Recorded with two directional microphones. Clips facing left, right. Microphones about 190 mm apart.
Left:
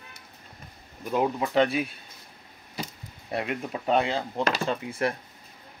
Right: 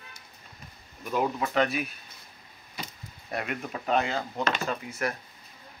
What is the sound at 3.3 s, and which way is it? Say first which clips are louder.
Speech: left 3 dB; 25° left (ahead or behind).